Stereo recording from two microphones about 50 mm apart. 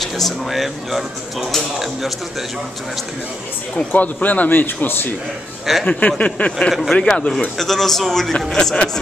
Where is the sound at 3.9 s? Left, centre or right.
Left.